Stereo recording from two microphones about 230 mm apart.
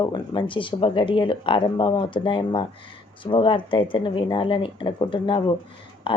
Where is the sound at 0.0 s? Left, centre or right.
Centre.